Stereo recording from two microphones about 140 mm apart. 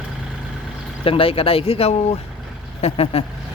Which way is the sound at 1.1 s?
40° left (ahead or behind).